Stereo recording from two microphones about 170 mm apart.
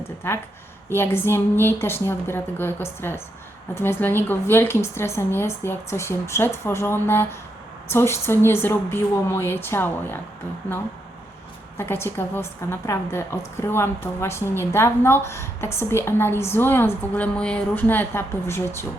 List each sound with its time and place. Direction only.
0.9 s a woman's voice: 15° left (ahead or behind)
11.8 s a woman's voice: 15° left (ahead or behind)